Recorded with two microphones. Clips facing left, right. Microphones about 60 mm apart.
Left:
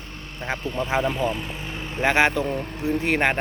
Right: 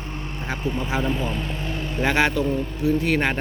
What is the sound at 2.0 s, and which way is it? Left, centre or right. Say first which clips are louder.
Speech: left 1 dB; left.